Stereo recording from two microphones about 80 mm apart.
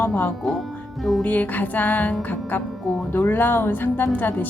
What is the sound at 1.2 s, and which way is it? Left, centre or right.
A woman's voice, left.